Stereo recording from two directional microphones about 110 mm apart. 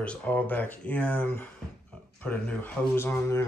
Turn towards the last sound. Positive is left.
turn(degrees=25)  # may be behind; listen again after turning